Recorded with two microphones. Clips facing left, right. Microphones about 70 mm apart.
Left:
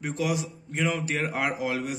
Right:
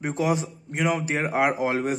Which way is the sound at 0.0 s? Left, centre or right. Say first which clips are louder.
Right 4 dB; right.